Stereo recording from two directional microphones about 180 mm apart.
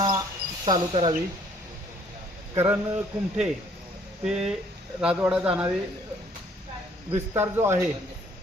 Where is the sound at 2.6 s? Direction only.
10° right (ahead or behind).